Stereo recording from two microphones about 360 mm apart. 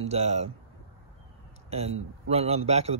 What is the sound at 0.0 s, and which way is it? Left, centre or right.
Speech, centre.